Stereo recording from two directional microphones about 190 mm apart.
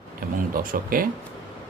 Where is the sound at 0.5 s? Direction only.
50° right (ahead or behind).